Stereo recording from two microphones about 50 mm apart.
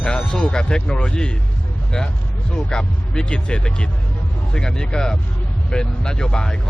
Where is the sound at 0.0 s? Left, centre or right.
Centre.